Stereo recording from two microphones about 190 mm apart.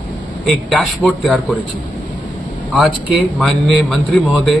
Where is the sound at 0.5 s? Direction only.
Centre (ahead or behind).